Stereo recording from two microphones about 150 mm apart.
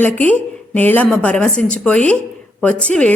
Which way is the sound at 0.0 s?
10° left (ahead or behind).